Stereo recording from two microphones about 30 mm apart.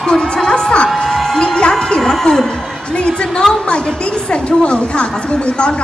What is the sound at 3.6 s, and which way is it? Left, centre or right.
A woman's voice, left.